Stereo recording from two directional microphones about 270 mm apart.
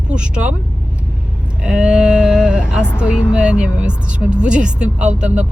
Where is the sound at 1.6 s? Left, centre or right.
Centre.